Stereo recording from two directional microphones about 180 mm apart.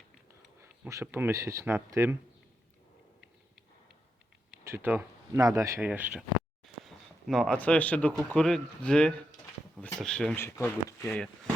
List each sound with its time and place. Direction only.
0.6 s speech: 15° right (ahead or behind)
4.6 s speech: 15° right (ahead or behind)
6.8 s speech: centre (ahead or behind)
10.4 s speech: 15° left (ahead or behind)
11.0 s speech: 5° left (ahead or behind)